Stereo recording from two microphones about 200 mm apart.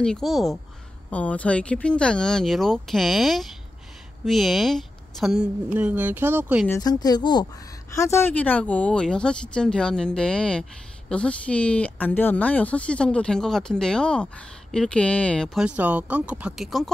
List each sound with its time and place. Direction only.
0.0 s speech: centre (ahead or behind)
6.7 s speech: 20° left (ahead or behind); by 16.9 s centre (ahead or behind)